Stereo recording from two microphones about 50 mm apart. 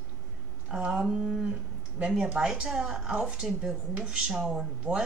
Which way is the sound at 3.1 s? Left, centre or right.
Right.